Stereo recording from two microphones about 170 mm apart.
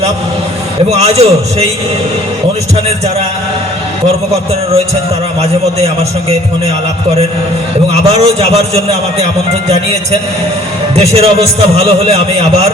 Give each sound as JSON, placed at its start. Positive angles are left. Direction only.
{"t": 0.9, "sound": "a man's voice", "side_deg": -35}
{"t": 8.1, "sound": "a man's voice", "side_deg": -35}
{"t": 10.9, "sound": "a man's voice", "side_deg": -35}